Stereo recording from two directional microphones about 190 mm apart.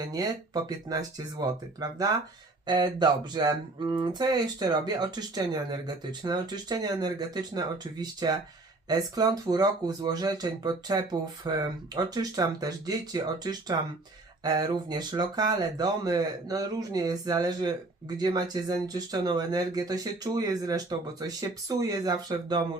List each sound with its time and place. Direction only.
0.0 s speech: 20° right (ahead or behind)